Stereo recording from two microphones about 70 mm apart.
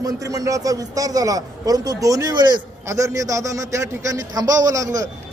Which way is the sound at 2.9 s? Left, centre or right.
Right.